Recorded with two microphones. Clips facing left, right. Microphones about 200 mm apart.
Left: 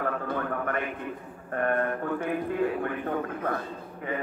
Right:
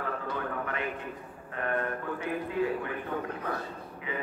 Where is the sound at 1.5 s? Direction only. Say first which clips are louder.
Left 5 dB; 50° left (ahead or behind).